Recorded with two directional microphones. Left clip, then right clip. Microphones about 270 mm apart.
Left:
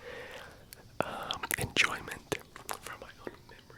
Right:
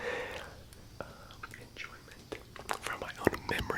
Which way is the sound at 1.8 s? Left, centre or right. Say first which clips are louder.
Left 18 dB; left.